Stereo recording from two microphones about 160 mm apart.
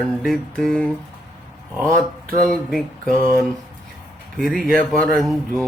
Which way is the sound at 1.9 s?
60° right (ahead or behind).